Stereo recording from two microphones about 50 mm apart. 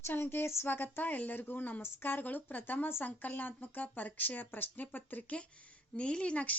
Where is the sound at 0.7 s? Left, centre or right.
Left.